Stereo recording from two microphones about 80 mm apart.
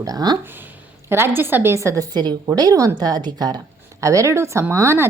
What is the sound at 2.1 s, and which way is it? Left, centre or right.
Speech, right.